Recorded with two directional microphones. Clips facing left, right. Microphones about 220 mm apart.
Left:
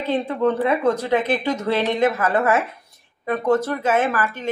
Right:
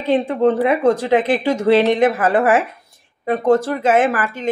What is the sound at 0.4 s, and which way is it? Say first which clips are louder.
A woman's voice: right 3 dB; 20° right (ahead or behind).